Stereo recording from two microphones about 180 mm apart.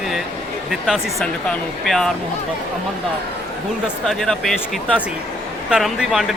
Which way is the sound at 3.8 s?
Centre (ahead or behind).